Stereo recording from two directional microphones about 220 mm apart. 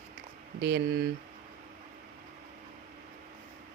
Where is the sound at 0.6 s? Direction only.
50° right (ahead or behind).